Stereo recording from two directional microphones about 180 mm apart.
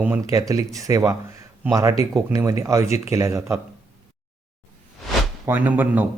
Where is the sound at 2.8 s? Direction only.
35° left (ahead or behind).